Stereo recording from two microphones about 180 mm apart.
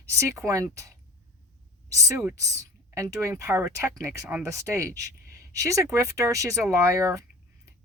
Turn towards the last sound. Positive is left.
turn(degrees=-15)  # may be behind; listen again after turning